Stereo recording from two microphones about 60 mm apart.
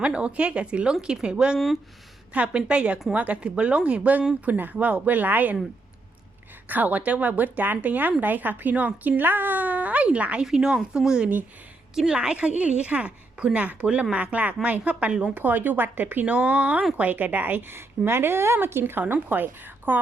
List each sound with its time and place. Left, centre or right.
0.0 s a woman's voice: centre
1.5 s speech: centre
2.3 s a woman's voice: centre
6.7 s a woman's voice: right